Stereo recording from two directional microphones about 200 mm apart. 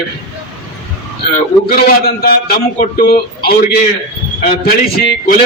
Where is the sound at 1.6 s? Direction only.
50° left (ahead or behind).